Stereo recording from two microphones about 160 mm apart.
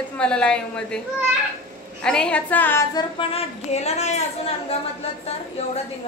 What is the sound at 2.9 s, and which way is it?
A woman's voice, 35° left (ahead or behind).